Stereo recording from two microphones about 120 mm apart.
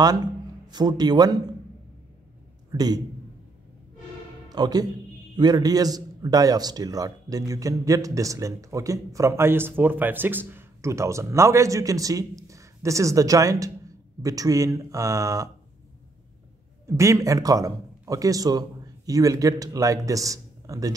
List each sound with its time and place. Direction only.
0.0 s a man's voice: 35° right (ahead or behind)
2.7 s a man's voice: 35° right (ahead or behind)
4.5 s a man's voice: 35° right (ahead or behind)
16.8 s a man's voice: 25° right (ahead or behind)